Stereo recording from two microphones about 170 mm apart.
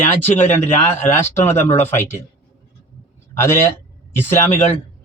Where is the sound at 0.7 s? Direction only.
35° left (ahead or behind).